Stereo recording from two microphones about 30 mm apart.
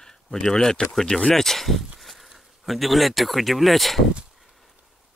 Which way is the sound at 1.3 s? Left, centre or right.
Centre.